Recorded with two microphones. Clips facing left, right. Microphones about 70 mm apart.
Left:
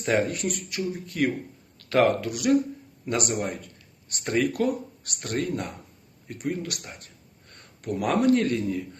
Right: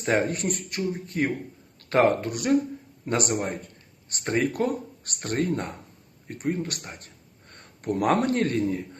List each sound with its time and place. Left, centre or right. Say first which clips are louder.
0.0 s speech: even; right